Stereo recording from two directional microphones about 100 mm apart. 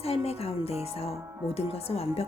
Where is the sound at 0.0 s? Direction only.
90° left.